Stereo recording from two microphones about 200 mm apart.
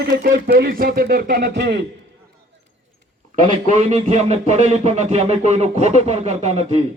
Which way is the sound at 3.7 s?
35° right (ahead or behind).